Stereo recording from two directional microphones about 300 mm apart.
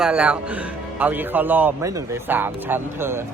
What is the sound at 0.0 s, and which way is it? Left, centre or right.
Speech, centre.